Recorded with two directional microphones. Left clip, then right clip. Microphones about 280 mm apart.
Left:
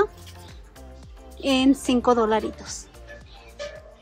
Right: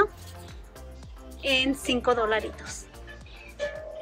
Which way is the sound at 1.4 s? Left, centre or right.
Centre.